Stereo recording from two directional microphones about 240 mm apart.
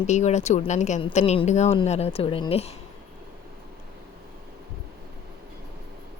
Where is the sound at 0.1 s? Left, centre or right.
Left.